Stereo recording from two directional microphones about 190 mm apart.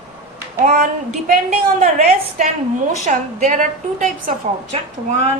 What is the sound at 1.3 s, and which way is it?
A woman's voice, 40° right (ahead or behind).